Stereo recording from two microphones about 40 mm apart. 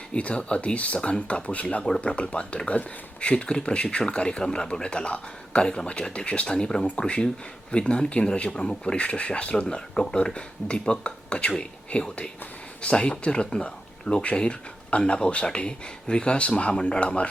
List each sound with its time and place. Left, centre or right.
0.1 s speech: left
9.6 s speech: centre
10.2 s speech: left